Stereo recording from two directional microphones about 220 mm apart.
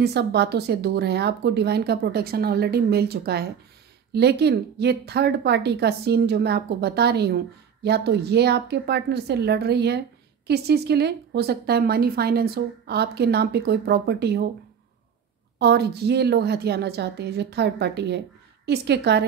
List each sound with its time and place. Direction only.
0.0 s a woman's voice: 50° right (ahead or behind)
15.6 s a woman's voice: 45° right (ahead or behind)